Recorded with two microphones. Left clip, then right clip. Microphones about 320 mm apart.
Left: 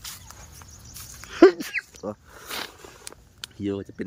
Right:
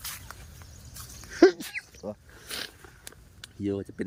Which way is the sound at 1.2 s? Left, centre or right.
Centre.